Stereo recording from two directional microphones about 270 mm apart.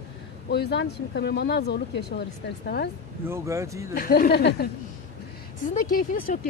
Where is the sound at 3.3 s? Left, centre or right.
Centre.